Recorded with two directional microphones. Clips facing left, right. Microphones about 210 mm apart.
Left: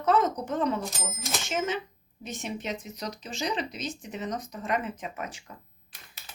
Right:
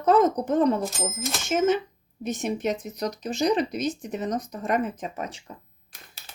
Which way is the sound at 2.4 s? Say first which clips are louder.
Right 7 dB; 45° right (ahead or behind).